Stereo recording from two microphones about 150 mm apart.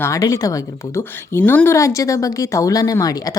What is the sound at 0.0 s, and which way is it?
Speech, 20° left (ahead or behind).